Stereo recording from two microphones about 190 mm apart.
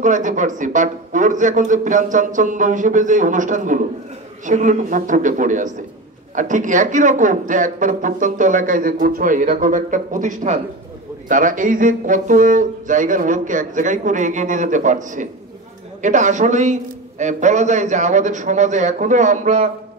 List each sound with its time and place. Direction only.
0.0 s a man's voice: 40° right (ahead or behind)